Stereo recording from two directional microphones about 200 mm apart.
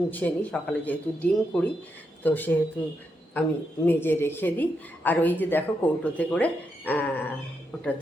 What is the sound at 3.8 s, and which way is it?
Speech, 10° left (ahead or behind).